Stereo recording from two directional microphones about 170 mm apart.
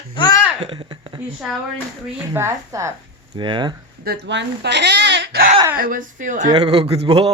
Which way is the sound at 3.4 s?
25° right (ahead or behind).